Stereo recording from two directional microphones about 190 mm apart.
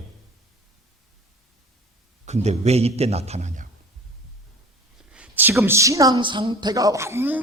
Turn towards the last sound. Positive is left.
turn(degrees=-10)  # may be behind; listen again after turning